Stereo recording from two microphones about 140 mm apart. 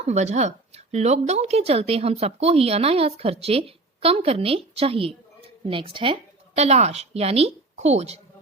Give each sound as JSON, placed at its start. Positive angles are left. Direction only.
{"t": 0.0, "sound": "speech", "side_deg": -50}
{"t": 6.6, "sound": "speech", "side_deg": -50}